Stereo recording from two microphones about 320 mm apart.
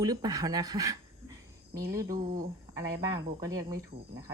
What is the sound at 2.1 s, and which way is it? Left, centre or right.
Speech, right.